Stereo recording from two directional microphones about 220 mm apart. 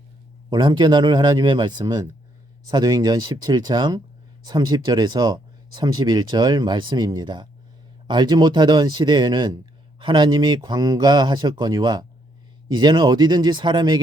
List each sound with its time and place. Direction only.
0.5 s speech: 20° right (ahead or behind)